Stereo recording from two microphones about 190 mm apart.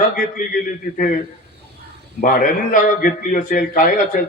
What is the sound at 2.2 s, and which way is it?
A man's voice, 45° left (ahead or behind).